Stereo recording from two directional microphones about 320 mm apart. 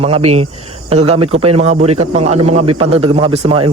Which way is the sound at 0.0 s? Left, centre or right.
Centre.